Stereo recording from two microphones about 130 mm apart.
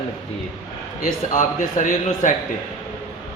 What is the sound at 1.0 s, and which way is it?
A man's voice, 85° left.